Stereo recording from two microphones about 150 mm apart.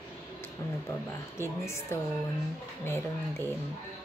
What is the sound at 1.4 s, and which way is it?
A woman's voice, 20° left (ahead or behind).